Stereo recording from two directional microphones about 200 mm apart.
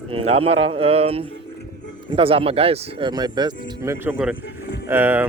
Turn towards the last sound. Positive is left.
turn(degrees=-10)  # may be behind; listen again after turning